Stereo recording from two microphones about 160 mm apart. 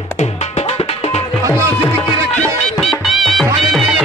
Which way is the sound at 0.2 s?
40° left (ahead or behind).